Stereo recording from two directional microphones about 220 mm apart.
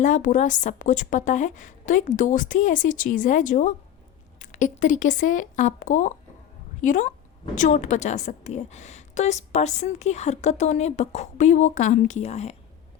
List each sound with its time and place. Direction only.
0.0 s a woman's voice: 35° left (ahead or behind)